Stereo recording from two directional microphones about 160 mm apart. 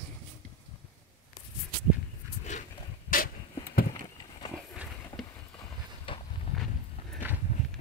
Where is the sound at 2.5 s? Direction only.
50° left (ahead or behind).